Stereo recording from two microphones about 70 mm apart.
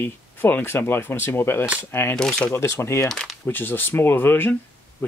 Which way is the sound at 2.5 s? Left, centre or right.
Left.